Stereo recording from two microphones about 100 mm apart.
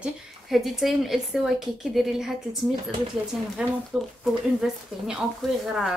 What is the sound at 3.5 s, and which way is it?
Speech, 5° right (ahead or behind).